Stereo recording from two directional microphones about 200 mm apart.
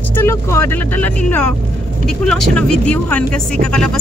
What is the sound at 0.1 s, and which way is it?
Speech, 10° left (ahead or behind).